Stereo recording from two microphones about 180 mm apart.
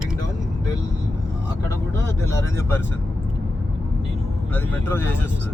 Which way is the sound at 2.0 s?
15° left (ahead or behind).